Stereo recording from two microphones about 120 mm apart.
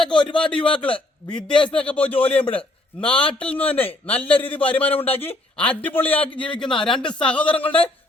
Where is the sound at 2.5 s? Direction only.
10° left (ahead or behind).